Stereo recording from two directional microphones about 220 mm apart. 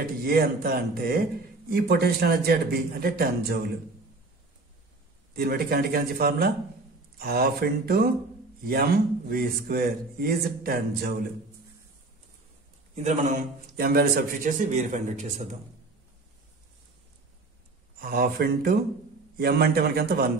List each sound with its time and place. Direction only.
0.2 s a man's voice: 45° right (ahead or behind)
5.3 s a man's voice: 45° right (ahead or behind)
12.9 s a man's voice: 30° right (ahead or behind)
17.9 s a man's voice: 40° right (ahead or behind)